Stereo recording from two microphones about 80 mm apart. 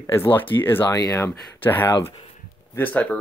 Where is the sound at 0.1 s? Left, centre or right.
Left.